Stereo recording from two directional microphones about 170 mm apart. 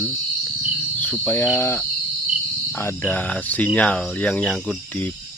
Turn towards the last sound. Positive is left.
turn(degrees=5)  # may be behind; listen again after turning